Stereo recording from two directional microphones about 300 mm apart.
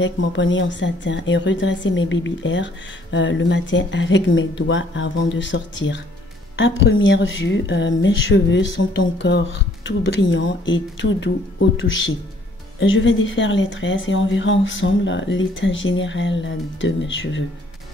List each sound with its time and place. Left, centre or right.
0.0 s a woman's voice: left